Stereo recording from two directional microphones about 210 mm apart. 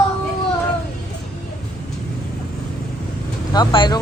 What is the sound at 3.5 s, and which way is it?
Speech, 20° left (ahead or behind).